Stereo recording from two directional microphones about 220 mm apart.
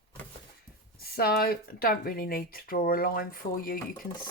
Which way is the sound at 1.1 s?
45° left (ahead or behind).